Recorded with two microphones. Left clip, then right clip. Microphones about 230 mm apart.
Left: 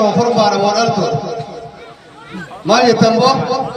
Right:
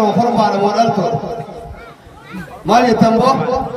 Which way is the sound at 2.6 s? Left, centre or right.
Left.